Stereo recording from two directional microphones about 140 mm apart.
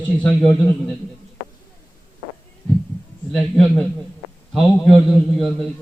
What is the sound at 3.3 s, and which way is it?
A man's voice, 5° left (ahead or behind).